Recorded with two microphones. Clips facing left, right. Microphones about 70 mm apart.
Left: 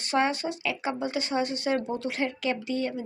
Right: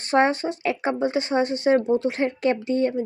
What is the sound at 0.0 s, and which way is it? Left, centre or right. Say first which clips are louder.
Speech: right 6 dB; right.